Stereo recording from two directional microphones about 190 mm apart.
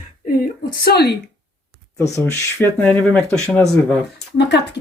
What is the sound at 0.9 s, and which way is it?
Speech, 60° left (ahead or behind).